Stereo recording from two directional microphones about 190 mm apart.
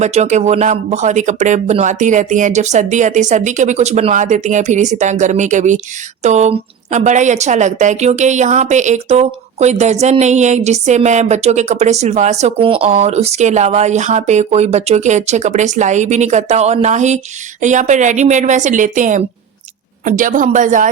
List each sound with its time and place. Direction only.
0.0 s a woman's voice: 35° right (ahead or behind)